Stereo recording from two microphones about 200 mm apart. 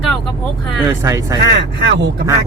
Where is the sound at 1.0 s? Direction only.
15° right (ahead or behind).